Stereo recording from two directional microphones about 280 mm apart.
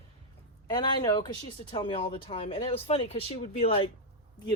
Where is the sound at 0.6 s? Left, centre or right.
Centre.